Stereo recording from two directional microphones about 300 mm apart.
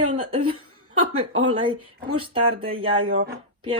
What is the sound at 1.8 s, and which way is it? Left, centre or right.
Speech, right.